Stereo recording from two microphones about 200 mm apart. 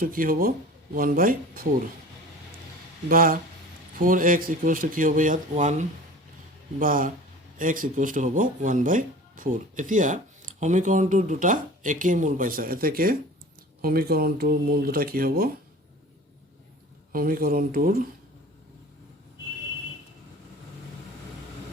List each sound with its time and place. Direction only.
0.0 s speech: 45° right (ahead or behind)
3.1 s speech: 45° right (ahead or behind)
17.1 s speech: 45° right (ahead or behind)